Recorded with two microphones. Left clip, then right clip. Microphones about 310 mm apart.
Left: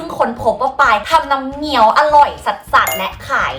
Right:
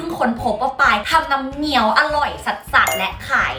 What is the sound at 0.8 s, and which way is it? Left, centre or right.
A woman's voice, centre.